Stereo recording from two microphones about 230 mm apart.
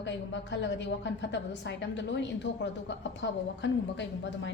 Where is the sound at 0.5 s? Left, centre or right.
Left.